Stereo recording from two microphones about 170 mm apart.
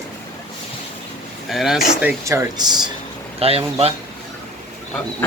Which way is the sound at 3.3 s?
35° right (ahead or behind).